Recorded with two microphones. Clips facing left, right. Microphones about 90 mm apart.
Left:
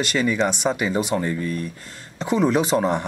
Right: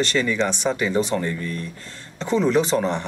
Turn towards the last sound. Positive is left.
turn(degrees=10)  # may be behind; listen again after turning